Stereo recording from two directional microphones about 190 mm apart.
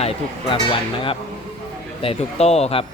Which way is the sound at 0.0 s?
30° left (ahead or behind).